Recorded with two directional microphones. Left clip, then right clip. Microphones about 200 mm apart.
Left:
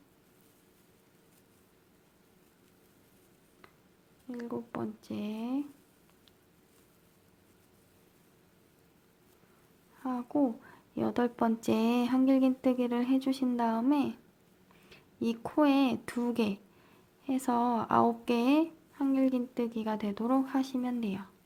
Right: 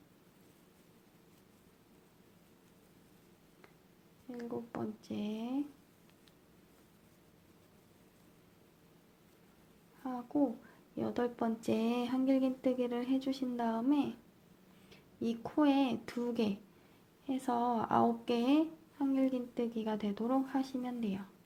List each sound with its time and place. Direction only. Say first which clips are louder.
4.3 s a woman's voice: left 3 dB; 20° left (ahead or behind)
10.0 s a sound: left 5 dB; 25° left (ahead or behind)
10.9 s a woman's voice: left 5 dB; 30° left (ahead or behind)